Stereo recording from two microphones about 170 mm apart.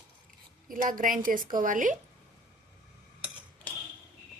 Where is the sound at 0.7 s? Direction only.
50° right (ahead or behind).